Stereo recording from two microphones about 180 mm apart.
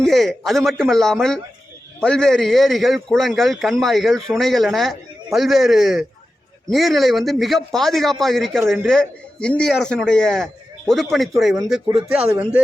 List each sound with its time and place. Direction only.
0.0 s a man's voice: centre (ahead or behind)